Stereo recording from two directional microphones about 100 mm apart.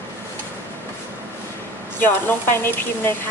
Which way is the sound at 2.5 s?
25° left (ahead or behind).